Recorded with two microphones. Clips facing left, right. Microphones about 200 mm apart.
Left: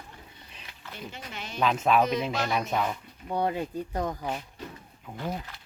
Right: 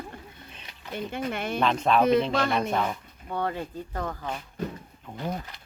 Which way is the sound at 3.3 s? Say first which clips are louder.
Left 2 dB; 15° left (ahead or behind).